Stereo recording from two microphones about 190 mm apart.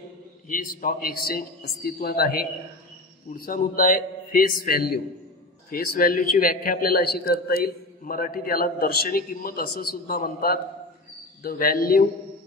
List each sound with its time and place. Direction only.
0.5 s a man's voice: 45° left (ahead or behind)